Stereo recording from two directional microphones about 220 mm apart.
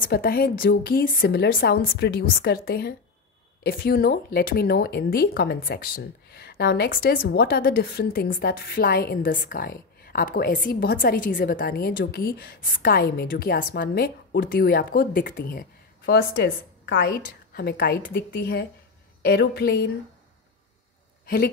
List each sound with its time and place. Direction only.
0.0 s speech: 45° left (ahead or behind)